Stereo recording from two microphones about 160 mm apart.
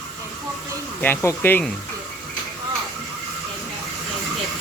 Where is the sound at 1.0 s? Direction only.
15° left (ahead or behind).